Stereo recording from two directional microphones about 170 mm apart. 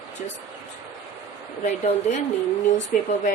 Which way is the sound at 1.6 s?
40° left (ahead or behind).